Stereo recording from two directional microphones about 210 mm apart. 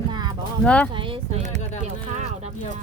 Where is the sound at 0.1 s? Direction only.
20° right (ahead or behind).